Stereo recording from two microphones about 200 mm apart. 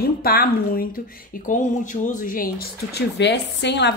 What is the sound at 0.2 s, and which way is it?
Speech, 50° left (ahead or behind).